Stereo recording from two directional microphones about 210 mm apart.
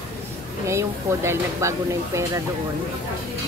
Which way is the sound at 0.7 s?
15° right (ahead or behind).